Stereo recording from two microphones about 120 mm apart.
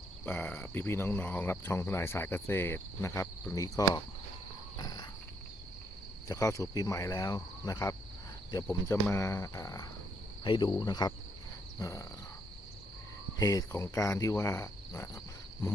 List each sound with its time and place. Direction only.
0.3 s speech: 15° left (ahead or behind)
4.8 s cricket: 30° left (ahead or behind)
6.2 s speech: 25° left (ahead or behind)
10.4 s cricket: 40° left (ahead or behind)
11.8 s speech: 30° left (ahead or behind)
13.4 s speech: 25° left (ahead or behind)